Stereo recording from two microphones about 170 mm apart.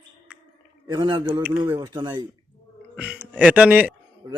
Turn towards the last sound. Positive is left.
turn(degrees=-10)  # may be behind; listen again after turning